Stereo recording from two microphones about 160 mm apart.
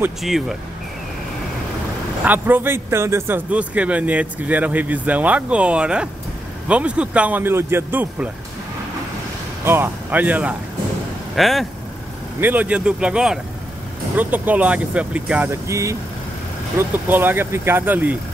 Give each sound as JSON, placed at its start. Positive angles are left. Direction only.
{"t": 0.2, "sound": "speech", "side_deg": 0}
{"t": 2.2, "sound": "a man's voice", "side_deg": -10}
{"t": 9.7, "sound": "a man's voice", "side_deg": -10}
{"t": 12.4, "sound": "a man's voice", "side_deg": -10}